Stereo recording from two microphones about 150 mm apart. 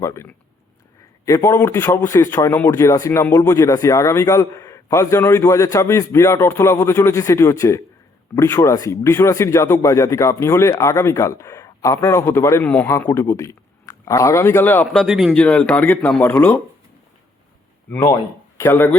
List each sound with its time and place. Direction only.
0.0 s a man's voice: 20° left (ahead or behind)
15.0 s speech: 5° right (ahead or behind)
15.4 s a man's voice: 10° left (ahead or behind)
17.8 s speech: 15° left (ahead or behind)